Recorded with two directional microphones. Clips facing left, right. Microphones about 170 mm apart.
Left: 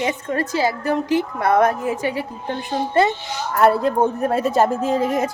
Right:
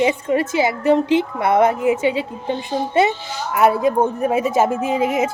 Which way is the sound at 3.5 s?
5° right (ahead or behind).